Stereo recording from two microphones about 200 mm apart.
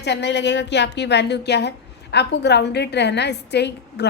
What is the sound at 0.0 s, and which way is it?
A woman's voice, 60° left (ahead or behind).